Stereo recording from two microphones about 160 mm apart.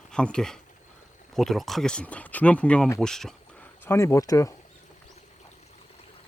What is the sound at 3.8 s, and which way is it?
Speech, 15° left (ahead or behind).